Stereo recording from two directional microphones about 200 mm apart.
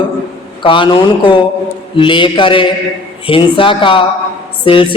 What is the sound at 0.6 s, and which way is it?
A man's voice, 25° left (ahead or behind).